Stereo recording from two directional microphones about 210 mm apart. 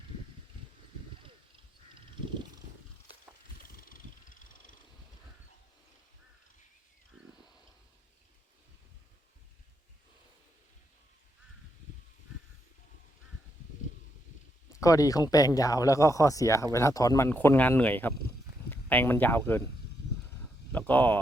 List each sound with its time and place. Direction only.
1.2 s crow: 25° right (ahead or behind)
3.8 s vehicle: 40° left (ahead or behind)
14.7 s speech: 15° left (ahead or behind)
20.7 s speech: 10° left (ahead or behind)